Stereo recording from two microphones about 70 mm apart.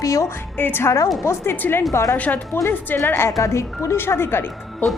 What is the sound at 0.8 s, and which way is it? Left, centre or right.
Speech, left.